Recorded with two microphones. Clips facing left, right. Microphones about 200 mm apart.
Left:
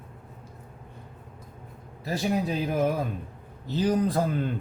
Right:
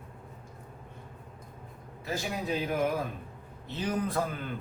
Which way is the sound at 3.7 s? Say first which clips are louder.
Left 7 dB; 35° left (ahead or behind).